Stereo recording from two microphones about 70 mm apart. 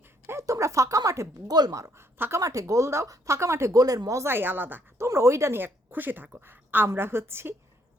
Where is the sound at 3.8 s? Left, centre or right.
Right.